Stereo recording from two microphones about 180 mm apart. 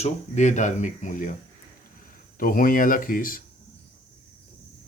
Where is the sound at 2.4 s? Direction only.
50° left (ahead or behind).